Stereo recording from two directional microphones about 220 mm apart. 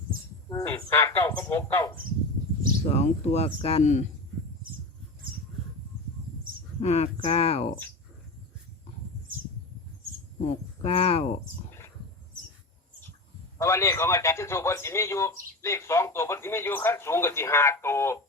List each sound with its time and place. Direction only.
0.5 s a man's voice: 10° left (ahead or behind)
2.8 s speech: 30° left (ahead or behind)
6.7 s speech: 30° left (ahead or behind)
10.4 s speech: 25° left (ahead or behind)
13.6 s a man's voice: 10° left (ahead or behind)